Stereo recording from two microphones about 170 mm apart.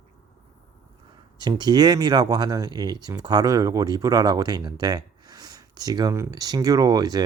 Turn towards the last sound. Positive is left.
turn(degrees=-20)  # may be behind; listen again after turning